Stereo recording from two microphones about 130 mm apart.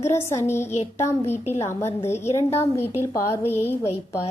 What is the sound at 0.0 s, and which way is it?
A woman's voice, 20° left (ahead or behind).